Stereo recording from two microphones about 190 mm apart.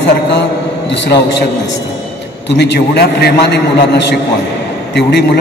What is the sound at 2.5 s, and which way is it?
A man's voice, 60° left (ahead or behind).